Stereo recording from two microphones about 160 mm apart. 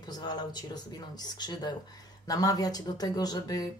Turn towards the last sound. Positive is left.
turn(degrees=25)  # may be behind; listen again after turning